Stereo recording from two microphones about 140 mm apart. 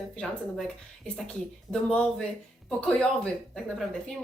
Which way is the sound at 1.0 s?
5° left (ahead or behind).